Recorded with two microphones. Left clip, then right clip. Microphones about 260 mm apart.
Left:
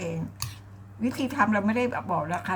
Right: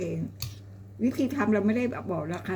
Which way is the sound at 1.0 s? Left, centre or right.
Left.